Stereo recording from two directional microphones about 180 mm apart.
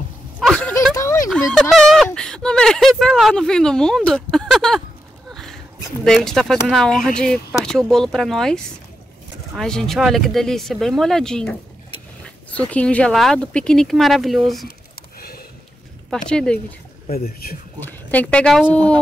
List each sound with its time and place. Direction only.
0.4 s a sound: 5° left (ahead or behind)
1.3 s speech: 5° left (ahead or behind)
5.3 s a sound: centre (ahead or behind)
6.0 s speech: centre (ahead or behind)
9.6 s speech: centre (ahead or behind)
15.1 s a sound: 60° left (ahead or behind)
16.1 s speech: 5° left (ahead or behind)
17.1 s speech: 55° left (ahead or behind)
17.7 s speech: 10° left (ahead or behind)